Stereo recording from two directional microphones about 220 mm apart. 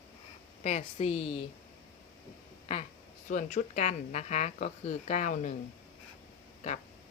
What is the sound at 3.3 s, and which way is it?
Speech, 35° left (ahead or behind).